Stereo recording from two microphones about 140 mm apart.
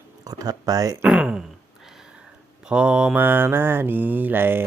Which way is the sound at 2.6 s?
5° right (ahead or behind).